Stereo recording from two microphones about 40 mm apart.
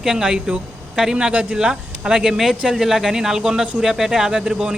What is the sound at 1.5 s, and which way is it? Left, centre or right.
Speech, right.